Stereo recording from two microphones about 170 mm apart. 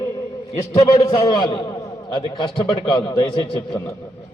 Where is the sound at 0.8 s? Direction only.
25° left (ahead or behind).